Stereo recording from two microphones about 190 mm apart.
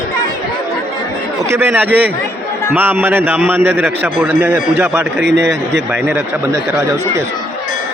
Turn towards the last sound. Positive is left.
turn(degrees=-15)  # may be behind; listen again after turning